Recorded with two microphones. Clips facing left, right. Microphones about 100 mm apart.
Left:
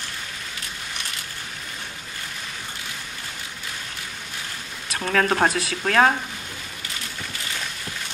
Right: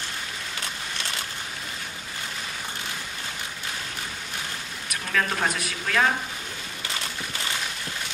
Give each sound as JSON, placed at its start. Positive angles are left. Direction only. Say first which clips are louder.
{"t": 5.0, "sound": "speech", "louder": "left 6 dB", "side_deg": 50}